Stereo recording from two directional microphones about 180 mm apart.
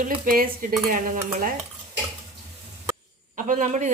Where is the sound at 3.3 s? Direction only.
45° right (ahead or behind).